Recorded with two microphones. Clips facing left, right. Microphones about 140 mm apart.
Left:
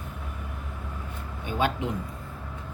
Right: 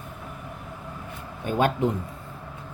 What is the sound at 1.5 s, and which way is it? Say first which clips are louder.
Speech: right 5 dB; 45° right (ahead or behind).